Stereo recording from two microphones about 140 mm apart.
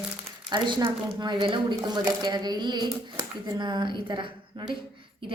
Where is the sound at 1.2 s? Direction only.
35° right (ahead or behind).